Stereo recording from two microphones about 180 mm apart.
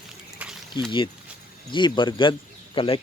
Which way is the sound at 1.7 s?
25° left (ahead or behind).